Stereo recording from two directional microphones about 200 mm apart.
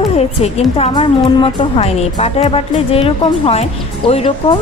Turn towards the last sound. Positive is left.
turn(degrees=30)  # may be behind; listen again after turning